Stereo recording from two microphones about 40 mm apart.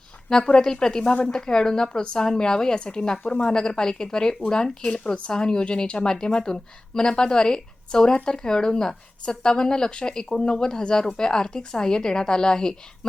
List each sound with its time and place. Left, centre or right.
0.3 s a woman's voice: centre
4.9 s a woman's voice: left